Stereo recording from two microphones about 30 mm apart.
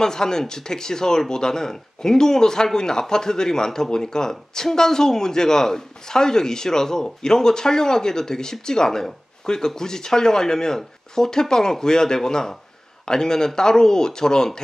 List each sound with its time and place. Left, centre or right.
0.0 s a man's voice: left